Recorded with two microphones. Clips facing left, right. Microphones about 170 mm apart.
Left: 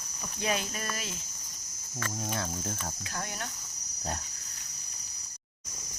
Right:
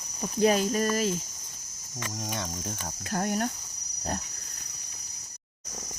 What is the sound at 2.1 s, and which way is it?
Speech, 5° left (ahead or behind).